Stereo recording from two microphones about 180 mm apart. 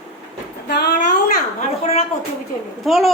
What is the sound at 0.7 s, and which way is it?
Speech, 65° left (ahead or behind).